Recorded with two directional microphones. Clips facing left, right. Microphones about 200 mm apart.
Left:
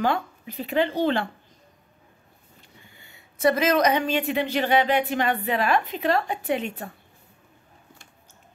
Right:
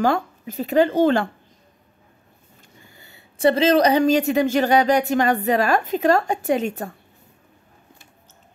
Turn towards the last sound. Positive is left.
turn(degrees=-45)  # may be behind; listen again after turning